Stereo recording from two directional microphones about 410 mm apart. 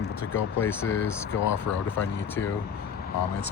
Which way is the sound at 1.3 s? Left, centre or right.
Left.